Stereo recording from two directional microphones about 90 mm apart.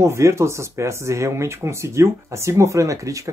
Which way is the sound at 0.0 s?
30° right (ahead or behind).